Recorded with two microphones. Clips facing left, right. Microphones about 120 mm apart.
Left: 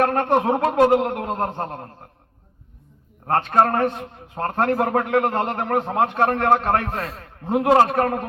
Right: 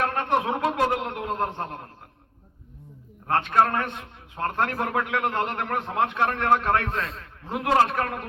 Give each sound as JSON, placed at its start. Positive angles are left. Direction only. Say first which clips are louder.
{"t": 0.0, "sound": "a man's voice", "louder": "left 6 dB", "side_deg": 40}
{"t": 3.2, "sound": "a man's voice", "louder": "left 3 dB", "side_deg": 45}